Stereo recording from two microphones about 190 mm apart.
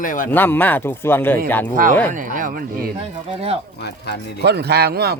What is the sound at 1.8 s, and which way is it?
Speech, 45° right (ahead or behind).